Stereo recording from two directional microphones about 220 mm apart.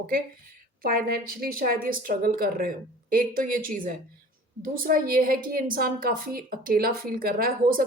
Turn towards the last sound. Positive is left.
turn(degrees=-40)  # may be behind; listen again after turning